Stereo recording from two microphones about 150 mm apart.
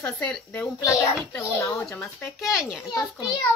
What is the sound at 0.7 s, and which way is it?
A child's voice, 20° left (ahead or behind).